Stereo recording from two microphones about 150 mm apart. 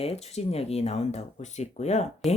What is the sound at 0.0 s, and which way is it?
Speech, 40° left (ahead or behind).